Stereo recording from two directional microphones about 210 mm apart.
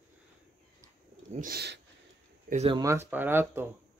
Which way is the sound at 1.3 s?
45° right (ahead or behind).